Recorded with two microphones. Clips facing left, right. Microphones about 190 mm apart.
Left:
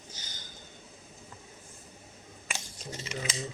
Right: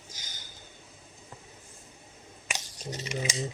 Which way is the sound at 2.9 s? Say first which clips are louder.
Right 4 dB; 15° right (ahead or behind).